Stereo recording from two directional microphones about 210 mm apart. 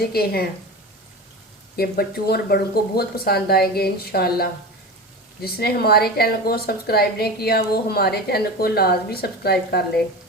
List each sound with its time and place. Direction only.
0.0 s a woman's voice: 45° left (ahead or behind)
1.7 s a woman's voice: 45° left (ahead or behind)